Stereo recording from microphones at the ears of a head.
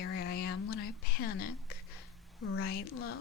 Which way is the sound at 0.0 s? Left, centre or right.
Left.